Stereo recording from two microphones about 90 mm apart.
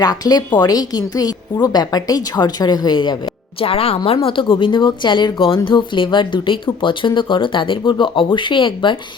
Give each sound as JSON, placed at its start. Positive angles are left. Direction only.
{"t": 0.0, "sound": "a woman's voice", "side_deg": 50}
{"t": 3.6, "sound": "a woman's voice", "side_deg": 90}